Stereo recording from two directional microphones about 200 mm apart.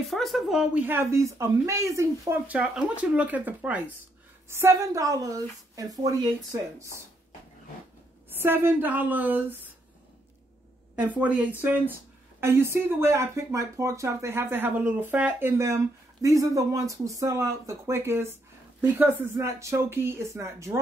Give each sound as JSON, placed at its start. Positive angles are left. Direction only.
{"t": 0.0, "sound": "speech", "side_deg": 0}
{"t": 8.4, "sound": "speech", "side_deg": -10}
{"t": 11.0, "sound": "speech", "side_deg": -5}